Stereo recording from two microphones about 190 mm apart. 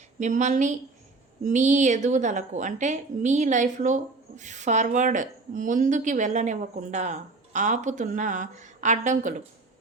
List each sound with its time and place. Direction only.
0.2 s a woman's voice: 40° right (ahead or behind)